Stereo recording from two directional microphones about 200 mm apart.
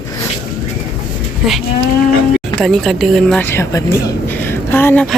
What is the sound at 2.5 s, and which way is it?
Speech, centre (ahead or behind).